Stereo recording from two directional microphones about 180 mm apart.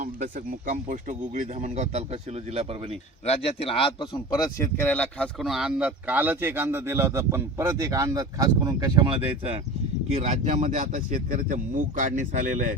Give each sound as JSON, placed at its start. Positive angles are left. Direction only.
{"t": 0.7, "sound": "speech", "side_deg": -45}
{"t": 3.2, "sound": "speech", "side_deg": 35}